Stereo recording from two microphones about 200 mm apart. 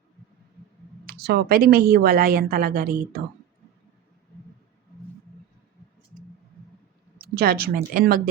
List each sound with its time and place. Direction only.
1.0 s a woman's voice: 50° right (ahead or behind)
7.2 s speech: 50° right (ahead or behind)